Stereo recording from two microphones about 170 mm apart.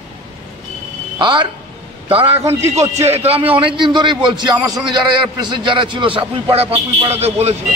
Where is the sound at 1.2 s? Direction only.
30° right (ahead or behind).